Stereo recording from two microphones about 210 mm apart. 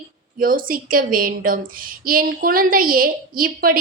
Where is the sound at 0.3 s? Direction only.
40° right (ahead or behind).